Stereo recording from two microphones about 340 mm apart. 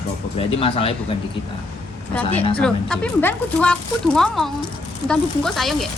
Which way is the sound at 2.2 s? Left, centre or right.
Centre.